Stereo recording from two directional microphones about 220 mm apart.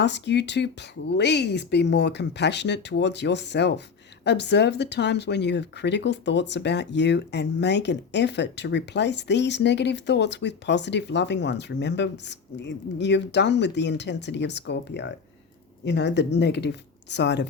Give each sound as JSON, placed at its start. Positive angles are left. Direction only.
{"t": 0.0, "sound": "speech", "side_deg": 50}